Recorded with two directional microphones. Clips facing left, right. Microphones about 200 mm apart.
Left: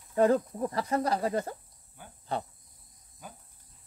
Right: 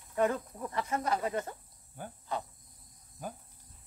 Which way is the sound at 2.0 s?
45° right (ahead or behind).